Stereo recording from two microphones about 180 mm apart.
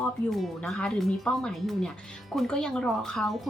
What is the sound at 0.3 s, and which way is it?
Speech, centre (ahead or behind).